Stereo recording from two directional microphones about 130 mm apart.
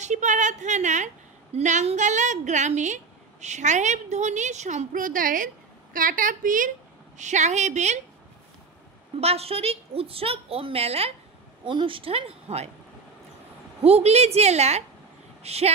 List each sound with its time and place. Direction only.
0.0 s a woman's voice: 65° right (ahead or behind); by 6.7 s 90° right
7.2 s a woman's voice: 65° right (ahead or behind)
9.2 s a woman's voice: 50° right (ahead or behind)
11.6 s a woman's voice: 40° right (ahead or behind)
13.8 s a woman's voice: 55° right (ahead or behind)